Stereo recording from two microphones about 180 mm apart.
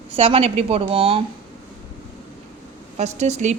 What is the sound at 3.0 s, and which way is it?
Speech, 40° right (ahead or behind).